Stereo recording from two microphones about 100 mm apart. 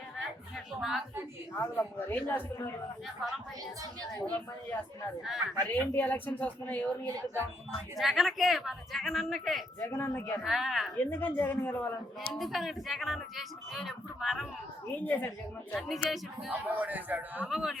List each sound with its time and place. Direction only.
0.8 s speech: 5° right (ahead or behind)
1.5 s speech: 20° left (ahead or behind)
4.3 s speech: 20° left (ahead or behind)
5.2 s speech: 5° right (ahead or behind)
5.8 s speech: 20° left (ahead or behind)
7.9 s speech: centre (ahead or behind)
9.8 s speech: 25° left (ahead or behind)
10.4 s speech: centre (ahead or behind)
10.9 s speech: 15° left (ahead or behind)
12.3 s speech: centre (ahead or behind)
14.8 s a woman's voice: 20° left (ahead or behind)
15.7 s speech: centre (ahead or behind)
16.5 s a man's voice: 15° right (ahead or behind)
17.5 s speech: 5° right (ahead or behind)